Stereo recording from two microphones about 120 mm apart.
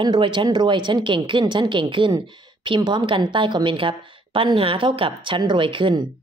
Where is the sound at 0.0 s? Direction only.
40° right (ahead or behind).